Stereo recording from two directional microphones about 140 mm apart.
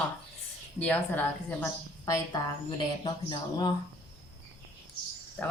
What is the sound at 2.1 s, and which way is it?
Speech, 25° left (ahead or behind).